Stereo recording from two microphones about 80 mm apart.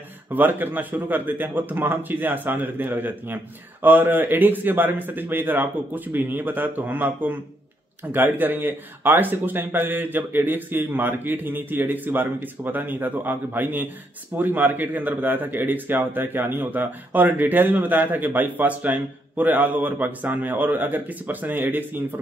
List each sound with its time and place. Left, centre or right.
0.3 s speech: right